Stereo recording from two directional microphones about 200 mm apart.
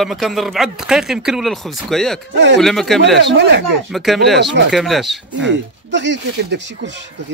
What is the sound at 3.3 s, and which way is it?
Speech, 60° right (ahead or behind).